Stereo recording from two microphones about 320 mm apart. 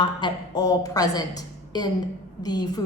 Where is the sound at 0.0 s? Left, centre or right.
Centre.